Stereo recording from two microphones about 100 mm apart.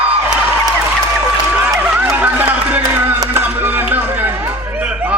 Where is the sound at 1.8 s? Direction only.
15° right (ahead or behind).